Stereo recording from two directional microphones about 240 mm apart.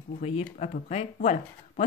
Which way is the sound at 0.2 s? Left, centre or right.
Left.